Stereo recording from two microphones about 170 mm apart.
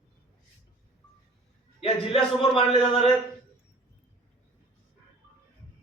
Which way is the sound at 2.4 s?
30° left (ahead or behind).